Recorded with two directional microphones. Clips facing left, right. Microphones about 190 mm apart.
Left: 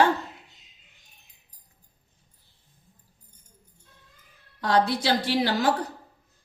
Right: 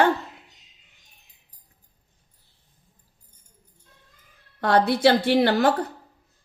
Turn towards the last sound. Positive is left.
turn(degrees=-60)  # may be behind; listen again after turning